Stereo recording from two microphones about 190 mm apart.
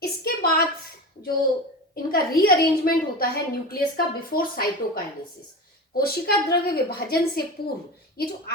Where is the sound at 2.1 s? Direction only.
50° left (ahead or behind).